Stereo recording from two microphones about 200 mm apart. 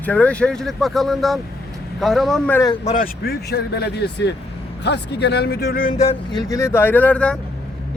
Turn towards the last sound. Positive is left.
turn(degrees=5)  # may be behind; listen again after turning